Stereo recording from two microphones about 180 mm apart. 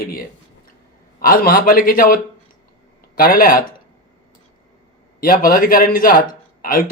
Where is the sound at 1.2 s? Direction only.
55° left (ahead or behind).